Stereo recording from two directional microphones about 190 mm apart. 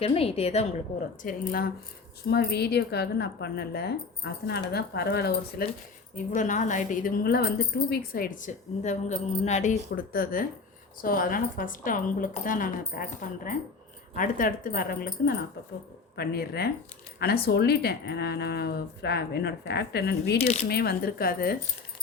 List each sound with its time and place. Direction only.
0.0 s a woman's voice: 30° left (ahead or behind)
1.2 s speech: 45° left (ahead or behind)
2.3 s speech: 60° left (ahead or behind)
6.1 s speech: 40° left (ahead or behind)
9.9 s speech: 50° left (ahead or behind)
20.4 s a woman's voice: 35° left (ahead or behind)
20.7 s speech: 55° left (ahead or behind)